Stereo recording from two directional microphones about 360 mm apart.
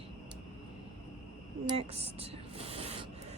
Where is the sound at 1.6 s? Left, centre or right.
Centre.